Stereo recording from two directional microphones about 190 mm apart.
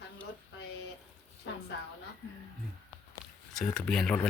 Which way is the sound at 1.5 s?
75° left (ahead or behind).